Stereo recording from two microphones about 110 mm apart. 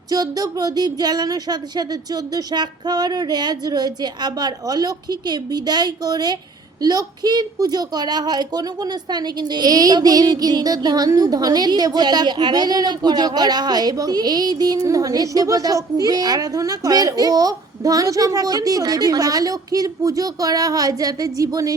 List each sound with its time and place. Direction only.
0.1 s a woman's voice: 35° right (ahead or behind)